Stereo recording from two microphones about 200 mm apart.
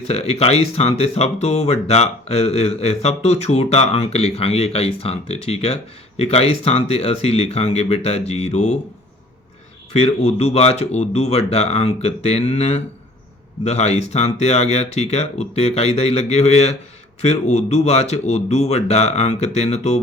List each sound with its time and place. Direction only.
0.0 s speech: 30° left (ahead or behind)
9.9 s speech: 30° left (ahead or behind)